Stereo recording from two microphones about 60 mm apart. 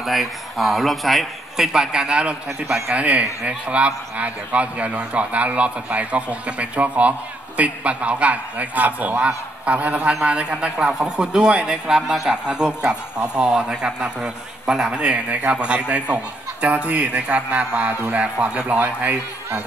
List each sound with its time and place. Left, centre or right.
0.0 s a man's voice: centre; by 19.1 s right